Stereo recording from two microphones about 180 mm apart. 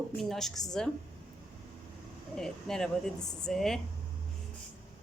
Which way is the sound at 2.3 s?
5° left (ahead or behind).